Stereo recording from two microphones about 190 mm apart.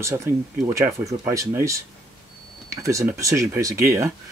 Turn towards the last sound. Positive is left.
turn(degrees=-15)  # may be behind; listen again after turning